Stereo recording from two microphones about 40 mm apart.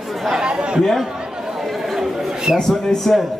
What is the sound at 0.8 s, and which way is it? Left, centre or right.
Speech, centre.